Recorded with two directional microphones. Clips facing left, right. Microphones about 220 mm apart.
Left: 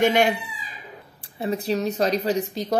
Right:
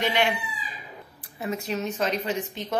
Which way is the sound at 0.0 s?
45° left (ahead or behind).